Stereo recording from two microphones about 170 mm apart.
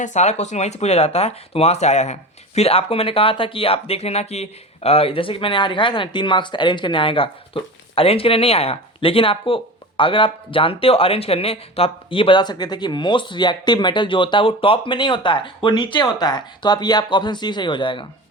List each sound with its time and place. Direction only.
0.0 s speech: 45° left (ahead or behind); by 18.0 s 30° left (ahead or behind)